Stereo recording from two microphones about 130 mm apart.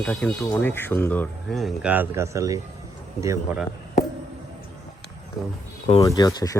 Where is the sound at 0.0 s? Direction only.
10° left (ahead or behind).